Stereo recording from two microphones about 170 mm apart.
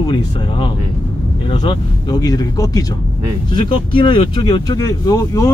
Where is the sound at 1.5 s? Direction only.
25° left (ahead or behind).